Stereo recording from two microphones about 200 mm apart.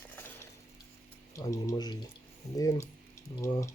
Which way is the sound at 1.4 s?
20° left (ahead or behind).